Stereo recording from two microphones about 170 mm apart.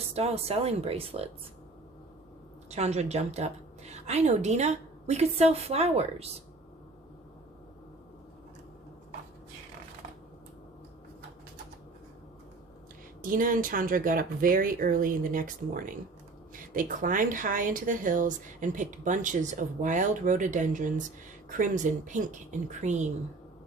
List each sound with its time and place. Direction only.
0.1 s a woman's voice: 35° right (ahead or behind)
2.6 s a woman's voice: 40° right (ahead or behind)
13.3 s speech: 55° right (ahead or behind)